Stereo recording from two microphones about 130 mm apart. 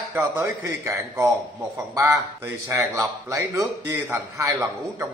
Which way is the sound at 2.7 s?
25° right (ahead or behind).